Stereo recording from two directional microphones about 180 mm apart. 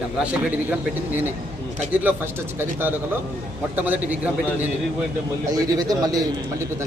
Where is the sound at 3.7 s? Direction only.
10° right (ahead or behind).